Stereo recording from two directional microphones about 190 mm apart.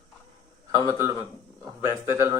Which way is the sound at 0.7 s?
15° right (ahead or behind).